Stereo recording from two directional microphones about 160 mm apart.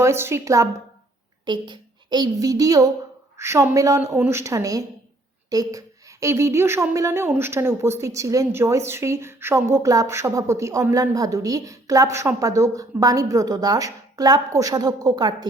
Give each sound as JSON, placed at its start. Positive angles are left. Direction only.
{"t": 0.0, "sound": "a woman's voice", "side_deg": -15}